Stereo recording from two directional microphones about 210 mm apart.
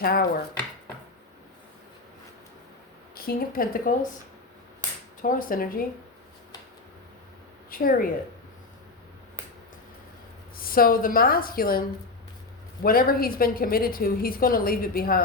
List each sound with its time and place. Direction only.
0.0 s a woman's voice: 45° left (ahead or behind)
3.2 s a woman's voice: 45° left (ahead or behind)
5.2 s speech: 40° left (ahead or behind)
7.7 s a woman's voice: 45° left (ahead or behind)
10.6 s a woman's voice: 45° left (ahead or behind)
12.8 s a woman's voice: 45° left (ahead or behind)